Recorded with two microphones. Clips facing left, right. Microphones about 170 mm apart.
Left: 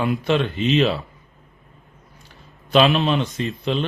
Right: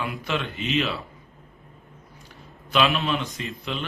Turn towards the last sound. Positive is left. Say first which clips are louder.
# left 8 dB
turn(degrees=30)  # may be behind; listen again after turning